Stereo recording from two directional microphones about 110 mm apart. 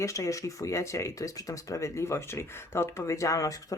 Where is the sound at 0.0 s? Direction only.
30° left (ahead or behind).